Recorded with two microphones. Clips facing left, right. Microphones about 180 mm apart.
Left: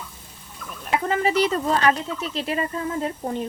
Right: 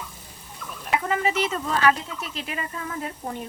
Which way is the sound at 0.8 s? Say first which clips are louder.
Left 2 dB; 35° left (ahead or behind).